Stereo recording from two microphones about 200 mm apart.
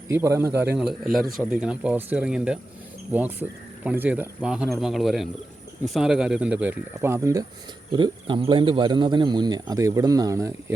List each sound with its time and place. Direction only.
0.1 s speech: 10° right (ahead or behind)
7.9 s speech: 25° right (ahead or behind)